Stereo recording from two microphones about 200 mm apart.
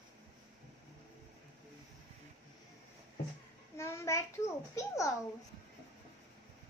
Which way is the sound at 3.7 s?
15° left (ahead or behind).